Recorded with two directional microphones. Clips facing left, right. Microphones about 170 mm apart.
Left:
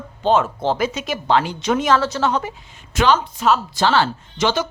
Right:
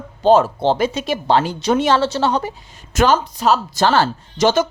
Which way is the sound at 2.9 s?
45° right (ahead or behind).